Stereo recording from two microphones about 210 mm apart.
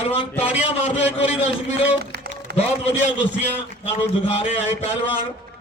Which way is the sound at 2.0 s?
50° right (ahead or behind).